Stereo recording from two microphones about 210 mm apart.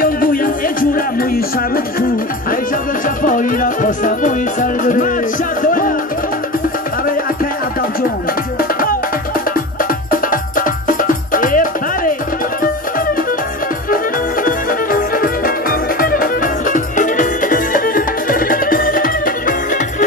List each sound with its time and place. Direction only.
0.0 s music: 40° left (ahead or behind)
3.2 s music: 40° left (ahead or behind)
10.1 s music: 40° left (ahead or behind)
14.4 s music: 40° left (ahead or behind)